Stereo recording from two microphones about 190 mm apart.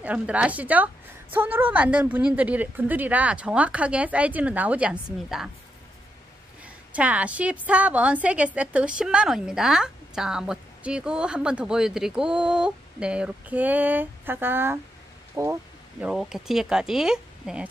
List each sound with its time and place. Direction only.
0.0 s a woman's voice: 5° right (ahead or behind)
6.6 s a woman's voice: 5° right (ahead or behind)
16.0 s a woman's voice: 5° right (ahead or behind)